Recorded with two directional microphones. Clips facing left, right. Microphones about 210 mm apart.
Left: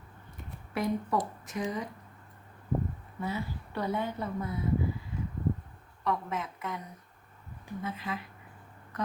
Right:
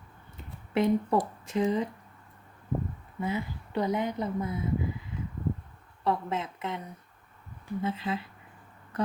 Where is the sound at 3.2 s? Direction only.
20° right (ahead or behind).